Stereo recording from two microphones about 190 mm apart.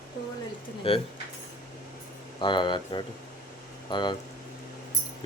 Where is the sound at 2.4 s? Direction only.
25° left (ahead or behind).